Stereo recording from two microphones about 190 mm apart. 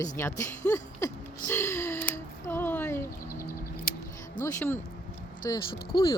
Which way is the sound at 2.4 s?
10° left (ahead or behind).